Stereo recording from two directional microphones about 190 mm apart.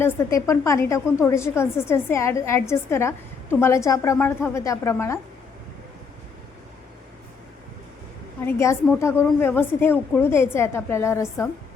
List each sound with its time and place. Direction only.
0.0 s a woman's voice: 15° left (ahead or behind)
8.4 s a woman's voice: 15° left (ahead or behind)